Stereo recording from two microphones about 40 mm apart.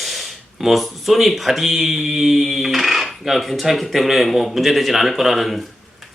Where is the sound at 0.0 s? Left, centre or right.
Centre.